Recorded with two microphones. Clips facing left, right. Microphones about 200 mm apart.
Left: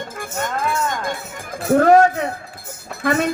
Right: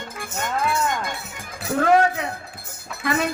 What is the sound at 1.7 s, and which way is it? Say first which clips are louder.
Child singing: left 6 dB; 45° left (ahead or behind).